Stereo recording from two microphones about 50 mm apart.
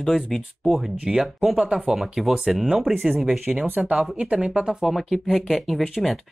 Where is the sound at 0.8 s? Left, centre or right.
Centre.